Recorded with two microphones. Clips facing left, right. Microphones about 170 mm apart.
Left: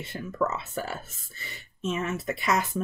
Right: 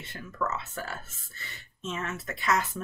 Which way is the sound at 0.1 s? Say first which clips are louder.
Left 4 dB; 15° left (ahead or behind).